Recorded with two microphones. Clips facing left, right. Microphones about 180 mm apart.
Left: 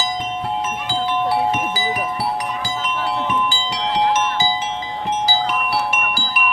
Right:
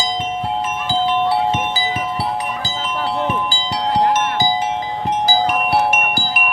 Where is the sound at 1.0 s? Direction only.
25° right (ahead or behind).